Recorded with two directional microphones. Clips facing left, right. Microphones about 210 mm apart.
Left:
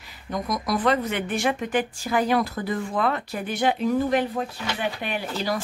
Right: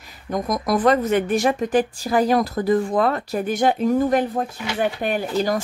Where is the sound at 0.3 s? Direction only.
50° right (ahead or behind).